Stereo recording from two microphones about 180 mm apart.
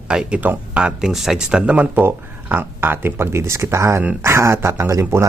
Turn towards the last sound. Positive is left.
turn(degrees=-15)  # may be behind; listen again after turning